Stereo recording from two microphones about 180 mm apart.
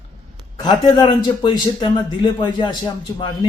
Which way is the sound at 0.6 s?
25° left (ahead or behind).